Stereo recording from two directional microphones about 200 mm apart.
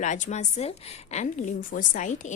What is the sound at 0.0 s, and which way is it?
A woman's voice, 35° left (ahead or behind).